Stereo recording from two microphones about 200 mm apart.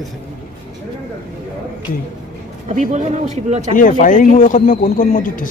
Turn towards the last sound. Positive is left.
turn(degrees=45)  # may be behind; listen again after turning